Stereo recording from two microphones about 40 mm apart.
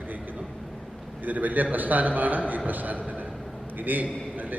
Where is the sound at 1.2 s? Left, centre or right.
Right.